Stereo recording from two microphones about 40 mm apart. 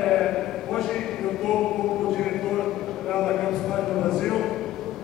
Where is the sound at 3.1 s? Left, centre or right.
Centre.